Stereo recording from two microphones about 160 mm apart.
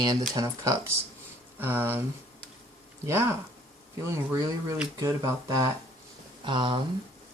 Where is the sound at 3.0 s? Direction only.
15° right (ahead or behind).